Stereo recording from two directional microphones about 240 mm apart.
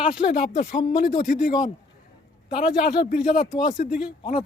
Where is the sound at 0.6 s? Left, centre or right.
Left.